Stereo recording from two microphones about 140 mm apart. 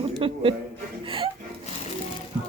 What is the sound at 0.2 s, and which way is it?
Speech, 40° right (ahead or behind).